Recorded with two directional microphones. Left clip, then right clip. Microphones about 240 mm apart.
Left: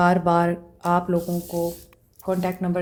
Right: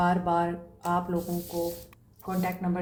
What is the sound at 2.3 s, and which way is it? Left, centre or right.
Speech, left.